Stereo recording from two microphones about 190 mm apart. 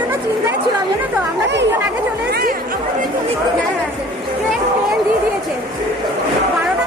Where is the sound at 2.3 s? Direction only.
55° right (ahead or behind).